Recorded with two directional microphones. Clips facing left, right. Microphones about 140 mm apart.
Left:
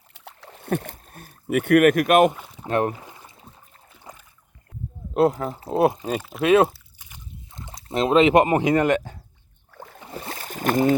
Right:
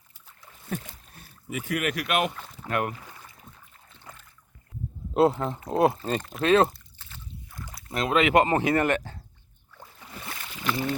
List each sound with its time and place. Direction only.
0.1 s rowboat: 70° left (ahead or behind)
0.9 s speech: 45° left (ahead or behind)
2.3 s rowboat: 15° left (ahead or behind)
2.6 s boat: 30° left (ahead or behind)
3.8 s a sound: 10° left (ahead or behind)
5.3 s speech: 5° left (ahead or behind)
7.1 s rowboat: 25° left (ahead or behind)
9.7 s boat: 65° left (ahead or behind)
10.0 s boat: 35° left (ahead or behind)